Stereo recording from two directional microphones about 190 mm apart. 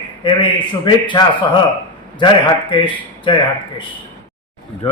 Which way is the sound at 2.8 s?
25° left (ahead or behind).